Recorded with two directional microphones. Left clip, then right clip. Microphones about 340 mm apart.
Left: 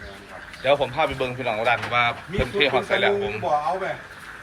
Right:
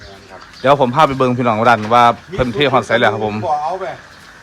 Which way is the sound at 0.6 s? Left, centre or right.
Right.